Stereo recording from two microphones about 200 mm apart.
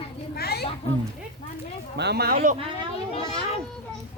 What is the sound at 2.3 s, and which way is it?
Speech, 30° right (ahead or behind).